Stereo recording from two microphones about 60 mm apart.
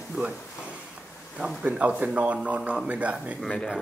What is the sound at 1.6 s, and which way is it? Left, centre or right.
Speech, right.